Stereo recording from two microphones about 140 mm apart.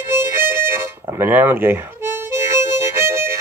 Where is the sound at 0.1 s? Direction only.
15° right (ahead or behind).